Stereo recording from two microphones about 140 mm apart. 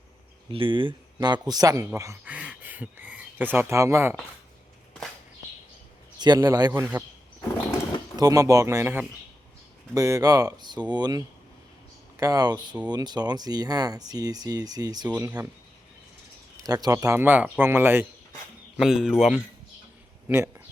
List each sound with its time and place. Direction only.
0.5 s speech: 40° right (ahead or behind); by 2.1 s 20° right (ahead or behind)
2.2 s speech: 10° right (ahead or behind)
6.1 s speech: 30° right (ahead or behind)
8.1 s speech: 25° right (ahead or behind)
15.1 s speech: 10° right (ahead or behind)
16.6 s speech: 25° right (ahead or behind)
18.8 s speech: 5° right (ahead or behind)
20.2 s speech: 15° right (ahead or behind)